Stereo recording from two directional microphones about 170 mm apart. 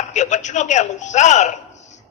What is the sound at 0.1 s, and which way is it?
A man's voice, 45° left (ahead or behind).